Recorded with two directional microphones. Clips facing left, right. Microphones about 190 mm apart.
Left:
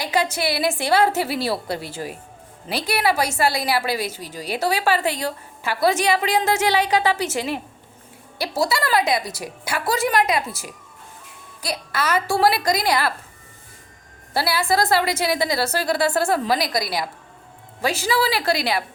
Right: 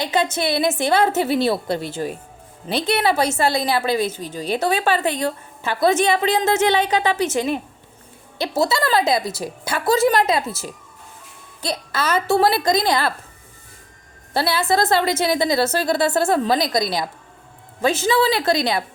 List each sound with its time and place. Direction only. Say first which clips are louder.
0.0 s a woman's voice: right 2 dB; 25° right (ahead or behind)
14.3 s a woman's voice: right 2 dB; 25° right (ahead or behind)